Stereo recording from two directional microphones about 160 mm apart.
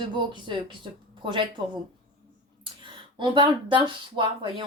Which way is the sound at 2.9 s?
30° right (ahead or behind).